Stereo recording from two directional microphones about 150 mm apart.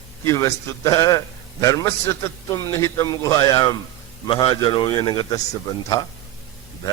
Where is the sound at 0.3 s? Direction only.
20° left (ahead or behind).